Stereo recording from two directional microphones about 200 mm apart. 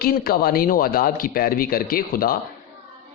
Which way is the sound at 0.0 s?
50° left (ahead or behind).